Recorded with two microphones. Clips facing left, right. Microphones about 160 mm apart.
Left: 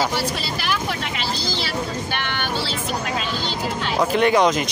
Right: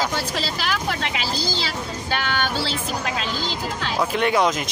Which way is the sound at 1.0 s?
90° right.